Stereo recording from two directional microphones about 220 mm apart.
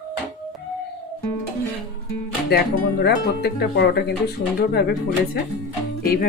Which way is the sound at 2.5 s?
45° left (ahead or behind).